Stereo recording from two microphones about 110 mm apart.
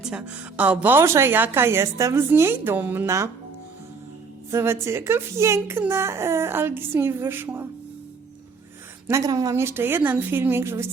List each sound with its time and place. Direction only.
0.0 s a woman's voice: 10° right (ahead or behind)
4.5 s a woman's voice: 25° right (ahead or behind)
9.0 s a woman's voice: 30° right (ahead or behind)